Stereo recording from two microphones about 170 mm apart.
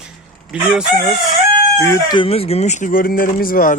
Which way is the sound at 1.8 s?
20° left (ahead or behind).